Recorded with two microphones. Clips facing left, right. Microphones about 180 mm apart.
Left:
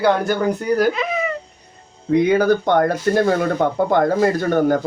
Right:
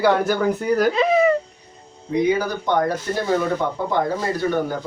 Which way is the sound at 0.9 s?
30° right (ahead or behind).